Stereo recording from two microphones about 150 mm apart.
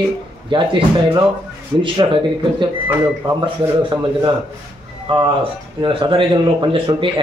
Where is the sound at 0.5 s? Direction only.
35° right (ahead or behind).